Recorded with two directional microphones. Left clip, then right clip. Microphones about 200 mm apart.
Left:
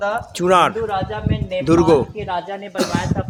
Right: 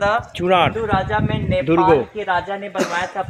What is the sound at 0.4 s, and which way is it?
Speech, 10° left (ahead or behind).